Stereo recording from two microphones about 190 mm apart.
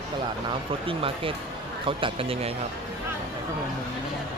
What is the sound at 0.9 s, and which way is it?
Speech, 30° right (ahead or behind).